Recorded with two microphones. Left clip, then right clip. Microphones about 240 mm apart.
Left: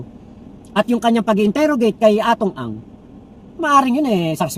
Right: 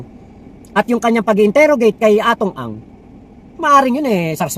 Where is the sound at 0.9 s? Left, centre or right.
Centre.